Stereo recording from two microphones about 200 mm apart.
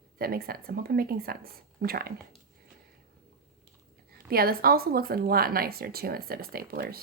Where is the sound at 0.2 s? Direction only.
50° right (ahead or behind).